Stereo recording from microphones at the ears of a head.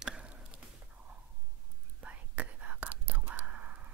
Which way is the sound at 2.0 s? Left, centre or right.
Right.